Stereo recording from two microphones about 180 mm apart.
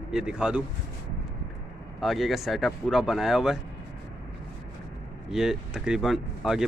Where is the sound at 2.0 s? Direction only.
Centre (ahead or behind).